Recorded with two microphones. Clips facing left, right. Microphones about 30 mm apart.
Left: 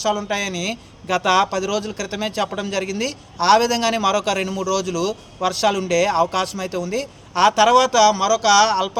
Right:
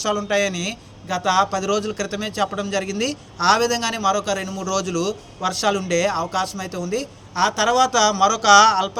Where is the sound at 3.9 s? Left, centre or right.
Left.